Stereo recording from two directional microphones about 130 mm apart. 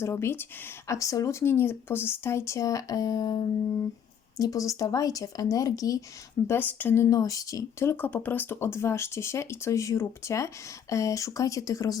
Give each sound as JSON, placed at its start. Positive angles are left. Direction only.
{"t": 0.0, "sound": "speech", "side_deg": 20}
{"t": 6.5, "sound": "speech", "side_deg": 15}